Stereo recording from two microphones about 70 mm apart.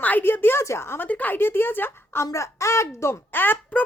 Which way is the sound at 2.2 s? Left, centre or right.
Left.